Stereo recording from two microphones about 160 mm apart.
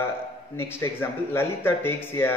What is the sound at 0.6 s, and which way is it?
Speech, 15° left (ahead or behind).